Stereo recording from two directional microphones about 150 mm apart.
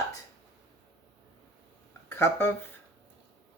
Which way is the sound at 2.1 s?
15° left (ahead or behind).